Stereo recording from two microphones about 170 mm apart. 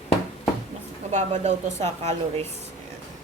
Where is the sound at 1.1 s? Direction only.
45° right (ahead or behind).